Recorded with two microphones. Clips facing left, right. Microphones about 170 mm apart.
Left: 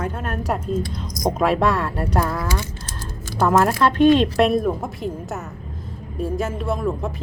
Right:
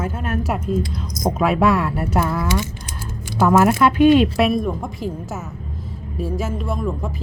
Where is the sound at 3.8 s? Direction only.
5° right (ahead or behind).